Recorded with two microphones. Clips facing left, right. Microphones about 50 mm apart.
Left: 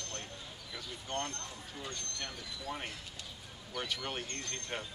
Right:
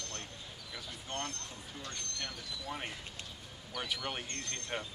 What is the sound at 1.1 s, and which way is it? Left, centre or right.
Speech, centre.